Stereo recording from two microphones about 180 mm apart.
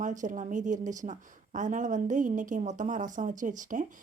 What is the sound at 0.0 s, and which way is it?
A woman's voice, 45° right (ahead or behind).